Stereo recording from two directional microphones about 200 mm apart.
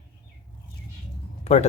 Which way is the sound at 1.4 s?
35° left (ahead or behind).